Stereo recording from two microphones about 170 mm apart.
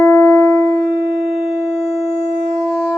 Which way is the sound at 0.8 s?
Centre (ahead or behind).